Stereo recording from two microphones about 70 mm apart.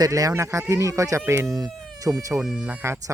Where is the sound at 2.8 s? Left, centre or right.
Right.